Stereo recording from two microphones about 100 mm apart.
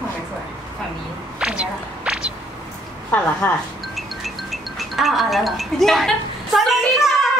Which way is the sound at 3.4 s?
15° left (ahead or behind).